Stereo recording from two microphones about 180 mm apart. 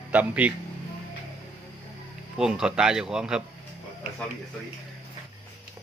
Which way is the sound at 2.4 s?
5° right (ahead or behind).